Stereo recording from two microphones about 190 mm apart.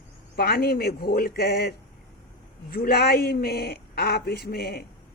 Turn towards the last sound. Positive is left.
turn(degrees=55)  # may be behind; listen again after turning